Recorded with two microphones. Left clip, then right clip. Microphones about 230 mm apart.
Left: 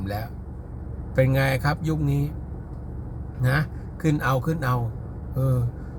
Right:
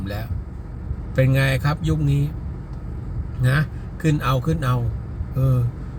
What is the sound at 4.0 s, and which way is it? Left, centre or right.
Speech, centre.